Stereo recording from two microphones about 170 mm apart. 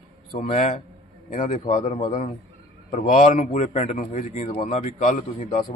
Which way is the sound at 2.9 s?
45° left (ahead or behind).